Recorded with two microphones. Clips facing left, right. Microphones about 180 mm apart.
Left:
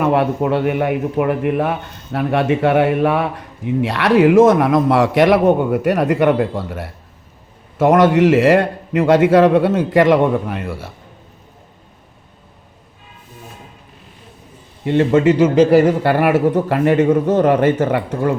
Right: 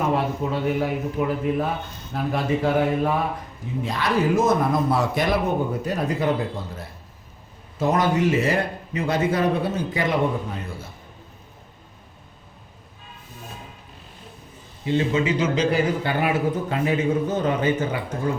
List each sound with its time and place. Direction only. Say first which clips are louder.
0.0 s a man's voice: left 7 dB; 70° left (ahead or behind)
14.8 s a man's voice: left 9 dB; 65° left (ahead or behind)
15.4 s a man's voice: left 11 dB; 50° left (ahead or behind)
15.8 s a man's voice: left 8 dB; 75° left (ahead or behind)